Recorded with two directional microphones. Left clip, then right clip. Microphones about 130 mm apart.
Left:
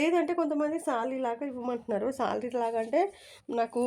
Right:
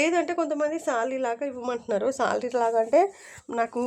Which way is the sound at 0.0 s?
20° right (ahead or behind).